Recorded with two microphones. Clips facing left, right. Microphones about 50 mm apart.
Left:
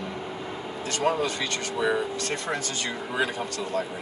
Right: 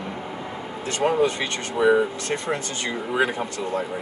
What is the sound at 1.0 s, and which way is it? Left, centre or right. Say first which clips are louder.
Speech: right 5 dB; right.